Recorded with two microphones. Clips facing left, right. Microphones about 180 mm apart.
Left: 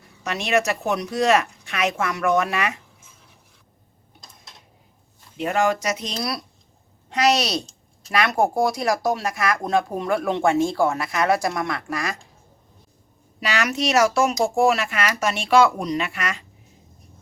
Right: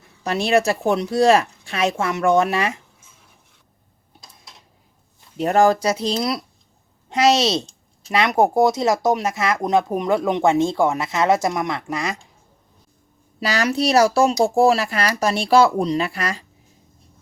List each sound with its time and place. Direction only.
0.2 s speech: 35° right (ahead or behind)
5.4 s speech: 40° right (ahead or behind); by 12.2 s 20° right (ahead or behind)
13.4 s speech: 35° right (ahead or behind)